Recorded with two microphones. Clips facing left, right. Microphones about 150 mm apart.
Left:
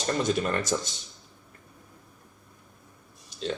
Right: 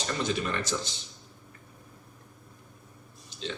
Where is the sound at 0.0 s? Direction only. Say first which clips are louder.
Left 4 dB; 45° left (ahead or behind).